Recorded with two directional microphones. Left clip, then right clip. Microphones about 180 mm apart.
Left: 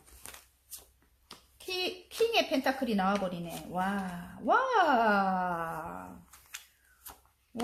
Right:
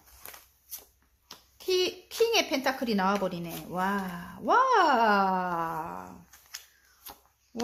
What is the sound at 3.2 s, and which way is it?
Speech, 40° right (ahead or behind).